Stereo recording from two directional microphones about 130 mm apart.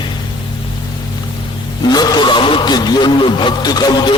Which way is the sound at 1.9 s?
30° left (ahead or behind).